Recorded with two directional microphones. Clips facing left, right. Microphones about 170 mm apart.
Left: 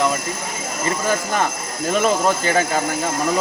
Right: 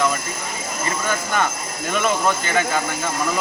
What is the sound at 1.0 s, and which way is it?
Speech, 35° left (ahead or behind).